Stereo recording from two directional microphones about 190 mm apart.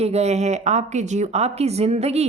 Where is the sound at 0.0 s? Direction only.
35° right (ahead or behind).